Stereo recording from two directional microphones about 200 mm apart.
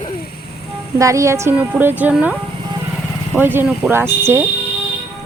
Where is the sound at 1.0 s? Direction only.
15° right (ahead or behind).